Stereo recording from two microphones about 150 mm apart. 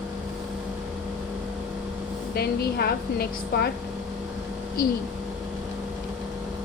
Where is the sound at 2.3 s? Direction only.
90° left.